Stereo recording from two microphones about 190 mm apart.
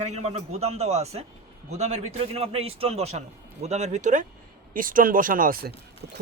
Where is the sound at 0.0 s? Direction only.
35° right (ahead or behind).